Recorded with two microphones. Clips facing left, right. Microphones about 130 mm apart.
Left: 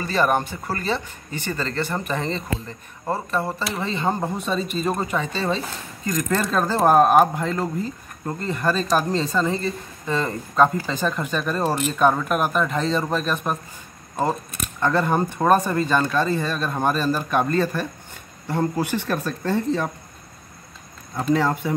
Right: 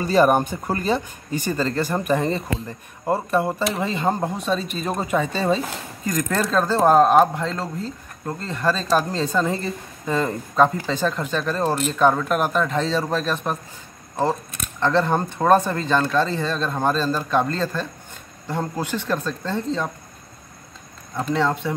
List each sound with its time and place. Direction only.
0.0 s speech: 15° right (ahead or behind); by 9.0 s 10° left (ahead or behind)
9.2 s speech: centre (ahead or behind)
14.8 s speech: 5° left (ahead or behind)
21.2 s speech: 5° left (ahead or behind)